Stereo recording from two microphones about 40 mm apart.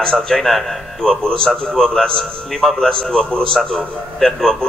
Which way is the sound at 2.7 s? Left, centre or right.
Centre.